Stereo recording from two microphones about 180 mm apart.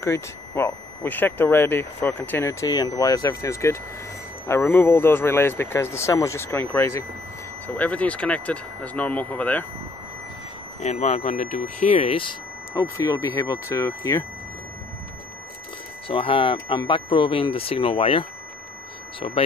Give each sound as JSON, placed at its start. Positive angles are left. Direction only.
{"t": 0.0, "sound": "speech", "side_deg": 15}
{"t": 10.8, "sound": "speech", "side_deg": 40}
{"t": 12.7, "sound": "speech", "side_deg": 15}
{"t": 16.1, "sound": "speech", "side_deg": 30}